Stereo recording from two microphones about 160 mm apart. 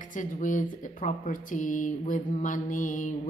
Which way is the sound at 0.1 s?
55° left (ahead or behind).